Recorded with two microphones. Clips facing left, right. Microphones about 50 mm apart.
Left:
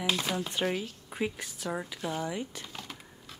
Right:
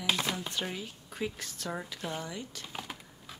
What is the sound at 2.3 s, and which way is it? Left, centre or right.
Speech, left.